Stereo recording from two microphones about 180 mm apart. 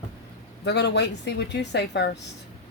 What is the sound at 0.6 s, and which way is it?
Speech, 70° left (ahead or behind).